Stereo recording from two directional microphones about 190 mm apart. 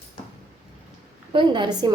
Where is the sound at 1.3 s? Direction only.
25° right (ahead or behind).